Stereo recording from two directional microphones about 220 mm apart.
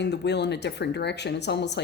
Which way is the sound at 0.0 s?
50° left (ahead or behind).